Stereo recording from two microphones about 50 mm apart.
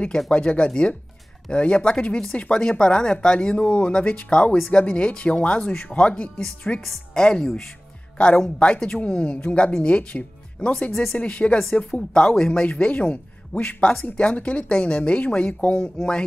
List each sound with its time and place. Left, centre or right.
0.3 s speech: left
8.2 s speech: left
9.0 s speech: left
10.9 s speech: centre
11.1 s speech: left